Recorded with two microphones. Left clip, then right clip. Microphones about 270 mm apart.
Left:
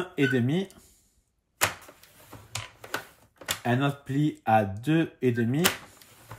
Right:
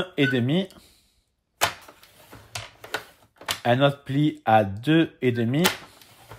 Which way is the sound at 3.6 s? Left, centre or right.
Right.